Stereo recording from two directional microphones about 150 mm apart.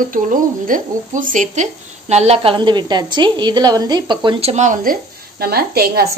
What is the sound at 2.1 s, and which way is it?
A woman's voice, 45° right (ahead or behind).